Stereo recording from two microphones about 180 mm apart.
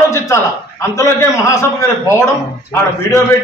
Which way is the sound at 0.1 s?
15° left (ahead or behind).